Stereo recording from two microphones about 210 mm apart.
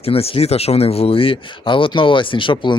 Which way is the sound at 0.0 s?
30° left (ahead or behind).